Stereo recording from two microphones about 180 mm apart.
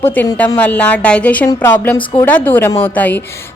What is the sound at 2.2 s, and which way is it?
Speech, 10° left (ahead or behind).